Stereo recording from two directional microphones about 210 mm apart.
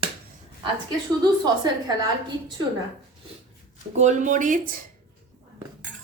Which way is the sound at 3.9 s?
35° right (ahead or behind).